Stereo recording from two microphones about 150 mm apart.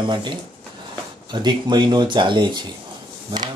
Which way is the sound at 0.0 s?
30° right (ahead or behind).